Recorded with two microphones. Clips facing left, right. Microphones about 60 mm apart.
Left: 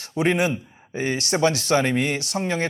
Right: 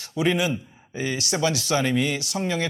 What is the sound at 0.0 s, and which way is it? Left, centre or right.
Speech, left.